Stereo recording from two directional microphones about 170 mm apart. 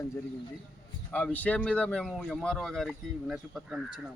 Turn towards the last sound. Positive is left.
turn(degrees=-5)  # may be behind; listen again after turning